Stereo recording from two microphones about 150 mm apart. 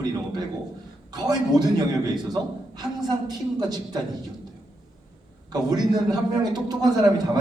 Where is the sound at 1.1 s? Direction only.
25° right (ahead or behind).